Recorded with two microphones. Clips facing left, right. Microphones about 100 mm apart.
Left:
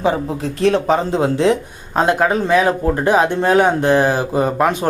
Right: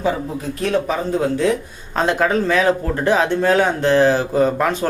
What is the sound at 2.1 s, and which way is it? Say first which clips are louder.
Speech: left 2 dB; 10° left (ahead or behind).